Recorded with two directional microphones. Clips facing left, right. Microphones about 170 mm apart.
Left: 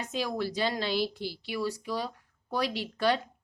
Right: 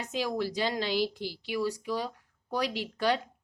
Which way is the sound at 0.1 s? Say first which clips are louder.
Right 1 dB; 15° right (ahead or behind).